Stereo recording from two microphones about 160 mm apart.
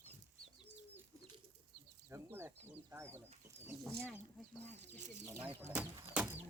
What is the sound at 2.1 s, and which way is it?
Speech, 15° right (ahead or behind).